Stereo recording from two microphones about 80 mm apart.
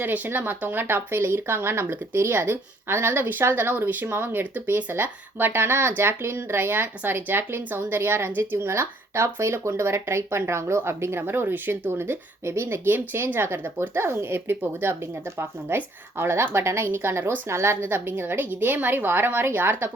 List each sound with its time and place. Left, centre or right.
0.0 s speech: right